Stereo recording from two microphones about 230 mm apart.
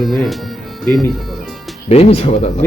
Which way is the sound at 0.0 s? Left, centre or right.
Centre.